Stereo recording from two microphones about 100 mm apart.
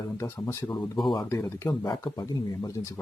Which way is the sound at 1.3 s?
25° left (ahead or behind).